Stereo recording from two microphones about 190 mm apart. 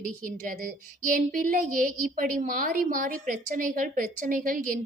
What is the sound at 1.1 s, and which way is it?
A woman's voice, 45° right (ahead or behind).